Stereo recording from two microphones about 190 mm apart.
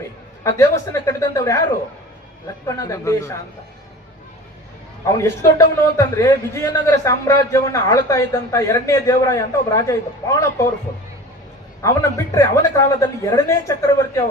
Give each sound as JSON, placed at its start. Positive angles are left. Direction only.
{"t": 0.4, "sound": "a man's voice", "side_deg": 15}
{"t": 2.6, "sound": "a man's voice", "side_deg": 15}
{"t": 5.1, "sound": "a man's voice", "side_deg": 15}
{"t": 11.8, "sound": "a man's voice", "side_deg": 15}